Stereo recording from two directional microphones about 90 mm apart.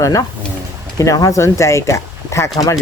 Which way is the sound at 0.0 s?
40° left (ahead or behind).